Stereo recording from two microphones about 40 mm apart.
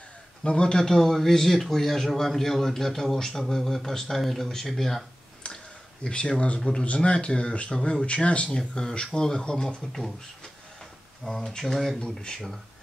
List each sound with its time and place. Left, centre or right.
0.4 s speech: left
6.0 s speech: left
11.2 s speech: centre
12.0 s speech: centre